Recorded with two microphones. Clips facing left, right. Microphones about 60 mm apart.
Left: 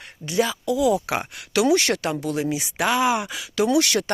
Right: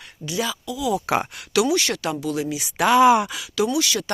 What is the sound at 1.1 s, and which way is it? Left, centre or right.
Speech, centre.